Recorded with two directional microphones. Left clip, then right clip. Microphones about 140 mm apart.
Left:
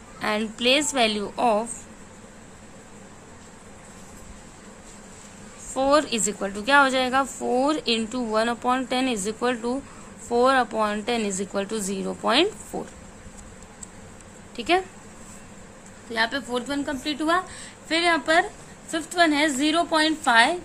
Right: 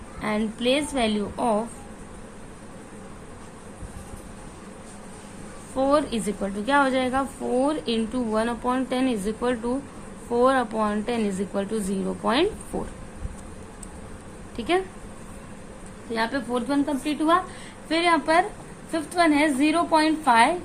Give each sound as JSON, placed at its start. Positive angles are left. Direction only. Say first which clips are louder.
{"t": 0.2, "sound": "a woman's voice", "louder": "left 2 dB", "side_deg": 50}
{"t": 5.7, "sound": "a woman's voice", "louder": "left 1 dB", "side_deg": 55}
{"t": 14.5, "sound": "a woman's voice", "louder": "left 2 dB", "side_deg": 35}
{"t": 16.1, "sound": "a woman's voice", "louder": "left 1 dB", "side_deg": 35}